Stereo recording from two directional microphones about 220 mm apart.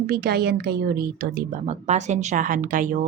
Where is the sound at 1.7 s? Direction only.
30° right (ahead or behind).